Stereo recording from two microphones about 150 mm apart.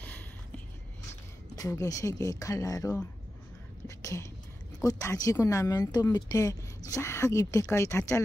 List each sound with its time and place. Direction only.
1.5 s speech: 25° left (ahead or behind)
3.8 s a sound: 20° left (ahead or behind)
4.7 s speech: 20° left (ahead or behind)